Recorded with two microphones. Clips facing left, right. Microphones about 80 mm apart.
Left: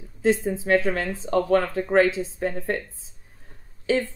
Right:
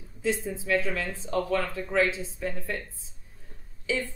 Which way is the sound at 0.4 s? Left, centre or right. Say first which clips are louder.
Left 6 dB; left.